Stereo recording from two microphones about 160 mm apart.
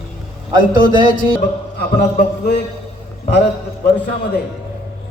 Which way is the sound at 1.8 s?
90° left.